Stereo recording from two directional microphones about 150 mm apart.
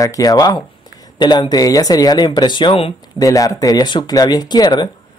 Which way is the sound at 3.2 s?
25° left (ahead or behind).